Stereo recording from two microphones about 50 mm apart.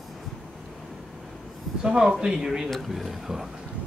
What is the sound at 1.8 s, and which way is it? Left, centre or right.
Speech, centre.